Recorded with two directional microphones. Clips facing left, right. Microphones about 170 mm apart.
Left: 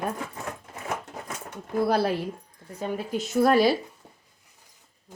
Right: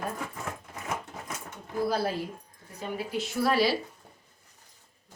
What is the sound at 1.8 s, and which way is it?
Speech, 70° left (ahead or behind).